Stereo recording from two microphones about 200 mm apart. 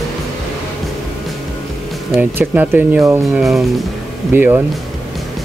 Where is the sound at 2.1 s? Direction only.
10° right (ahead or behind).